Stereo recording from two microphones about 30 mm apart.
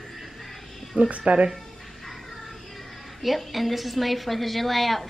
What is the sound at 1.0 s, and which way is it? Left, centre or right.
Speech, right.